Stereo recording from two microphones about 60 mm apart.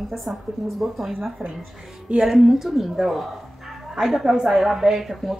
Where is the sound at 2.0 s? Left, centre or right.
Centre.